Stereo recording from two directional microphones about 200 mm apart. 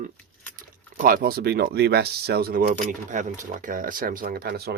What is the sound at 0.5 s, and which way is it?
Speech, 45° right (ahead or behind).